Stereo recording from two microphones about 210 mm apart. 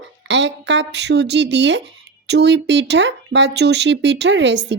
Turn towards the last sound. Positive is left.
turn(degrees=-55)  # may be behind; listen again after turning